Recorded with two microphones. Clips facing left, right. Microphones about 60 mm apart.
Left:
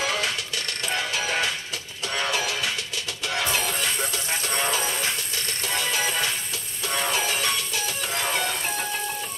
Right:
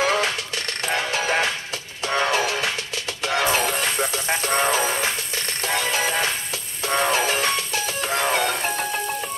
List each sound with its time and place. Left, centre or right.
0.0 s music: right